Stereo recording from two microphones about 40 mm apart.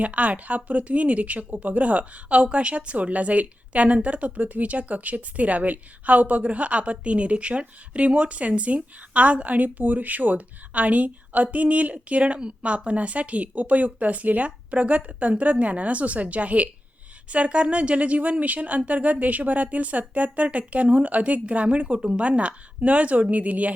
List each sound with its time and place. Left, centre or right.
0.0 s speech: right